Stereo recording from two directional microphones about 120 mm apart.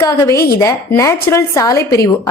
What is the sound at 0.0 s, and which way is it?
A woman's voice, 25° left (ahead or behind).